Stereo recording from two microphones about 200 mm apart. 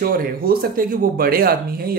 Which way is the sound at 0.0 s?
45° right (ahead or behind).